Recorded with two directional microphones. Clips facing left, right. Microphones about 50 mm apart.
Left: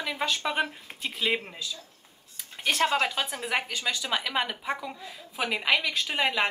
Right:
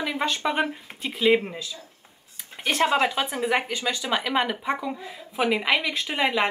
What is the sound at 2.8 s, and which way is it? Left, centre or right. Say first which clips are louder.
Speech: right 5 dB; centre.